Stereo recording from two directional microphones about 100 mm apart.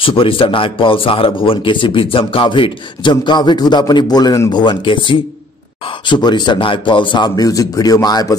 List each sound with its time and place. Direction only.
0.0 s speech: 65° left (ahead or behind); by 8.4 s 40° left (ahead or behind)